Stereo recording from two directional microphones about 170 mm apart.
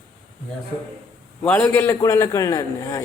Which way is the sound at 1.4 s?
10° left (ahead or behind).